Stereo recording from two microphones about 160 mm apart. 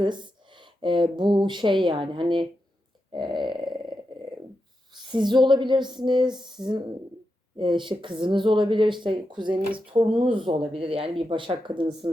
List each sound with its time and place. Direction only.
0.0 s speech: 30° right (ahead or behind)
5.1 s speech: 30° right (ahead or behind)